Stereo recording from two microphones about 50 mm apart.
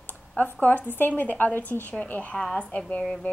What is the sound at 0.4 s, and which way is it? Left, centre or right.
Speech, left.